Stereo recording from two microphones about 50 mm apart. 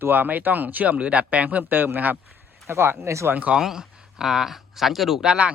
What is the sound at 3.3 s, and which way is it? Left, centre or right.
Speech, right.